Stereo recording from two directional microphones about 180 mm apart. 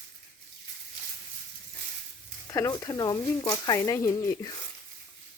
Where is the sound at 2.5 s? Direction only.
20° left (ahead or behind).